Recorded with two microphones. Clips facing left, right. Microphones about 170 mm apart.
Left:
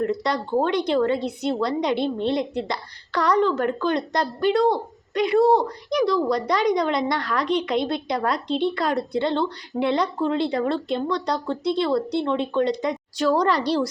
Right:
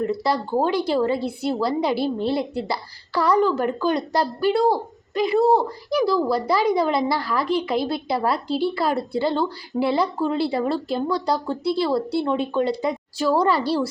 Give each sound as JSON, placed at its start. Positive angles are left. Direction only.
{"t": 0.0, "sound": "a woman's voice", "side_deg": -5}